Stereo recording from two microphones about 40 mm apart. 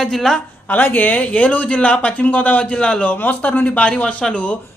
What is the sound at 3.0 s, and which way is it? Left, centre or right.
Speech, left.